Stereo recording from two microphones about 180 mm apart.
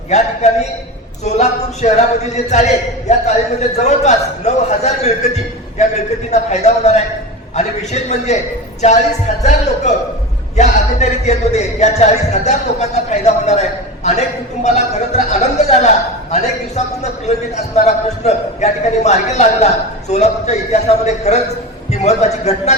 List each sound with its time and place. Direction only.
0.1 s a man's voice: 40° left (ahead or behind)